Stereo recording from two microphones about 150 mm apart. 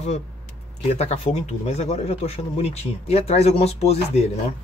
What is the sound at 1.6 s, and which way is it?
Speech, 45° left (ahead or behind).